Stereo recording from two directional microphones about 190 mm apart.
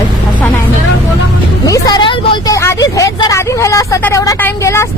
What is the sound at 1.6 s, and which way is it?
Speech, 20° left (ahead or behind).